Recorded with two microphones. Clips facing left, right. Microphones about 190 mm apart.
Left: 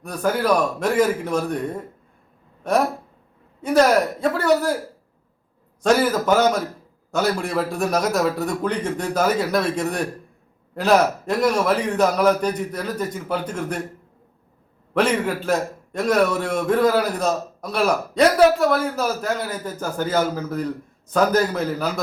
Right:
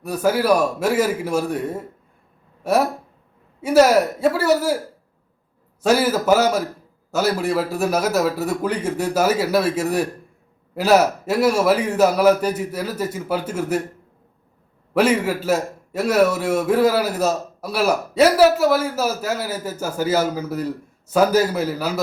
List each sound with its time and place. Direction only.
0.0 s a man's voice: 5° right (ahead or behind)
5.8 s a man's voice: 5° right (ahead or behind)
14.9 s a man's voice: 5° right (ahead or behind)